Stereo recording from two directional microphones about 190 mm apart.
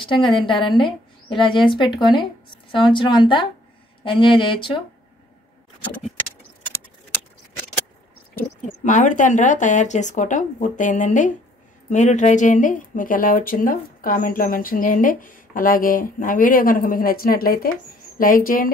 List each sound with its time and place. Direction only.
0.0 s a woman's voice: 25° left (ahead or behind)
8.4 s a woman's voice: 40° left (ahead or behind)